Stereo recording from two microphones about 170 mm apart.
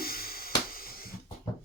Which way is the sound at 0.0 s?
60° left (ahead or behind).